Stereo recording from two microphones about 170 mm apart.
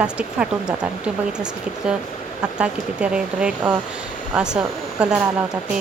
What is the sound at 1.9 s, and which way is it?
Speech, 5° right (ahead or behind).